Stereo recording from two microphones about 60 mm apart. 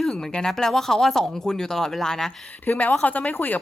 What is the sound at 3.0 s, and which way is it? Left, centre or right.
Speech, left.